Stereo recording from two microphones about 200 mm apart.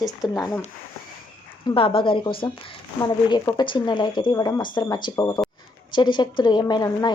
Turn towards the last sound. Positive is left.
turn(degrees=20)  # may be behind; listen again after turning